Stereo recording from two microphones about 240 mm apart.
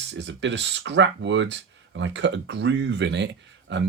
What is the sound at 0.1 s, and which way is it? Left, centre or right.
Speech, right.